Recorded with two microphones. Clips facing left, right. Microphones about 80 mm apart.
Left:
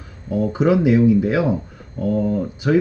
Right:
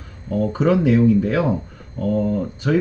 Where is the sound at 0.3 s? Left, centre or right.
Centre.